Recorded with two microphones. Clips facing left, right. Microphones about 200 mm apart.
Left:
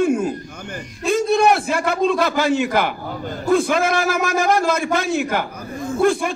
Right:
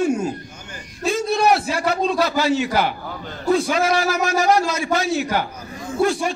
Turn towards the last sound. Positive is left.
turn(degrees=55)  # may be behind; listen again after turning